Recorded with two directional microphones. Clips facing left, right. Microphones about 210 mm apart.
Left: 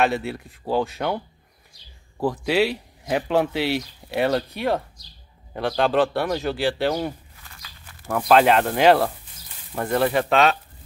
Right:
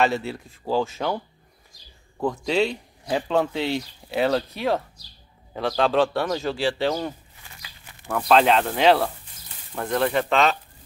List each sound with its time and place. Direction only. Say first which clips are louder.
0.0 s speech: left 1 dB; centre (ahead or behind)
2.1 s speech: left 2 dB; 5° left (ahead or behind)
7.4 s a sound: right 1 dB; 15° right (ahead or behind)
8.1 s speech: left 2 dB; 5° left (ahead or behind)